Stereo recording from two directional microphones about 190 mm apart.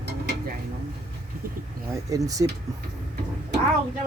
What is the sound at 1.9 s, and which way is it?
Speech, 15° right (ahead or behind).